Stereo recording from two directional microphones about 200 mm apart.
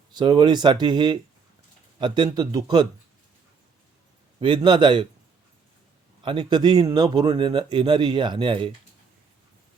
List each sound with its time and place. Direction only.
0.1 s speech: 20° right (ahead or behind)
4.4 s speech: 25° right (ahead or behind)
6.2 s speech: 20° right (ahead or behind)